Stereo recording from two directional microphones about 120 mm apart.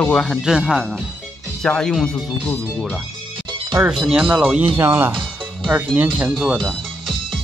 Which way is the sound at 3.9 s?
5° right (ahead or behind).